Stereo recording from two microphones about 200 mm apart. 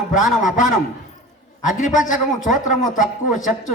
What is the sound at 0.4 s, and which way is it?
A man's voice, 40° left (ahead or behind).